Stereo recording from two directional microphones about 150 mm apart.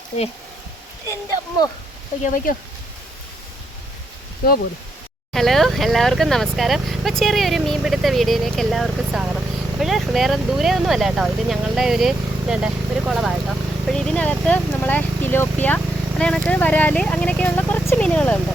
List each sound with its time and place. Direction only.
2.2 s speech: 65° left (ahead or behind)
4.4 s speech: 75° left (ahead or behind)
5.3 s speech: centre (ahead or behind)